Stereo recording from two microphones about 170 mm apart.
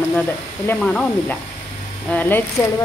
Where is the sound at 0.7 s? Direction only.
5° left (ahead or behind).